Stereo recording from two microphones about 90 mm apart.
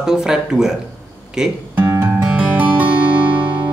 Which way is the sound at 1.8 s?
25° right (ahead or behind).